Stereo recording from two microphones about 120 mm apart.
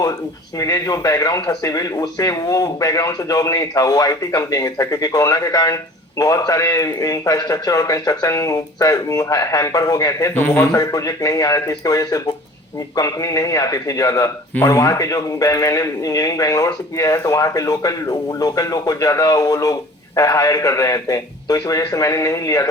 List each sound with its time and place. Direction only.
0.6 s a man's voice: 30° left (ahead or behind)
10.3 s speech: 15° left (ahead or behind)
10.7 s a man's voice: 30° left (ahead or behind)